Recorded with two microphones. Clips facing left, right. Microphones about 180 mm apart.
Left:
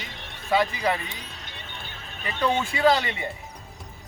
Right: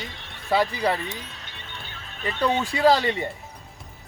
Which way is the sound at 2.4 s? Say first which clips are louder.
Right 1 dB; 35° right (ahead or behind).